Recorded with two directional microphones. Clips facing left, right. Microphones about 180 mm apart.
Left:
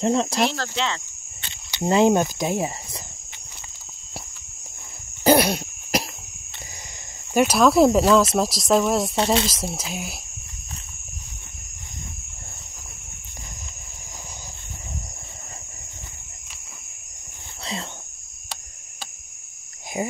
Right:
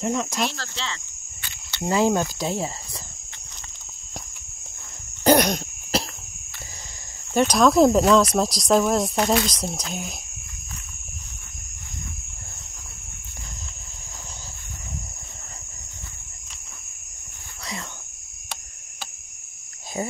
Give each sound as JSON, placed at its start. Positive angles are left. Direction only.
{"t": 0.0, "sound": "speech", "side_deg": 30}
{"t": 0.4, "sound": "speech", "side_deg": 60}
{"t": 1.7, "sound": "speech", "side_deg": 20}
{"t": 5.2, "sound": "cough", "side_deg": 5}
{"t": 7.3, "sound": "speech", "side_deg": 5}
{"t": 9.1, "sound": "speech", "side_deg": 25}
{"t": 9.5, "sound": "speech", "side_deg": 5}
{"t": 19.9, "sound": "a sound", "side_deg": 15}